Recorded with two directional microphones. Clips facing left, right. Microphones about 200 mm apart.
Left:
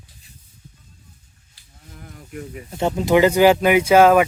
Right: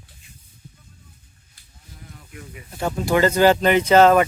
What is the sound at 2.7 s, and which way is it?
Speech, 25° left (ahead or behind).